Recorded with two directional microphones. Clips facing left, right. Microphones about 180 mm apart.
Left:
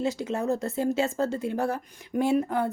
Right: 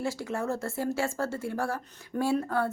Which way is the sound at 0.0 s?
20° left (ahead or behind).